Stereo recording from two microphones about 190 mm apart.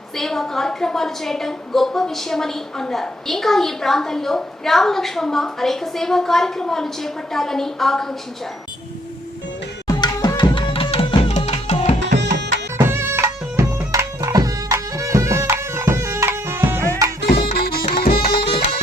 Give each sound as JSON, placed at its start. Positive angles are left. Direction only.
{"t": 0.2, "sound": "a woman's voice", "side_deg": 0}
{"t": 9.8, "sound": "tabla", "side_deg": 20}
{"t": 12.2, "sound": "music", "side_deg": -65}
{"t": 12.7, "sound": "music", "side_deg": -15}
{"t": 17.5, "sound": "music", "side_deg": 55}
{"t": 18.4, "sound": "music", "side_deg": 30}